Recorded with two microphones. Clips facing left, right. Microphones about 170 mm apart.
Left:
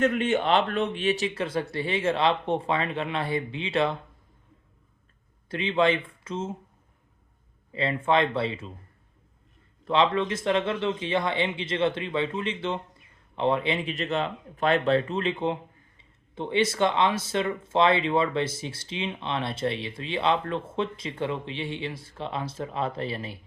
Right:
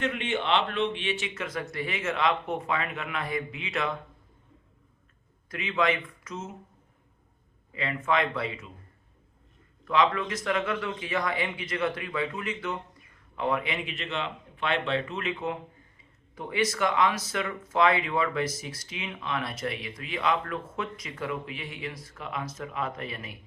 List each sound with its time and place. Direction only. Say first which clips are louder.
0.0 s a man's voice: left 6 dB; 45° left (ahead or behind)
5.5 s speech: left 4 dB; 30° left (ahead or behind)
7.7 s speech: left 4 dB; 30° left (ahead or behind)
9.8 s a man's voice: left 2 dB; 30° left (ahead or behind)